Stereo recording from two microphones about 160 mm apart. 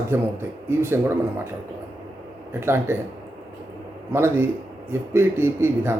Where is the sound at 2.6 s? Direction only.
15° right (ahead or behind).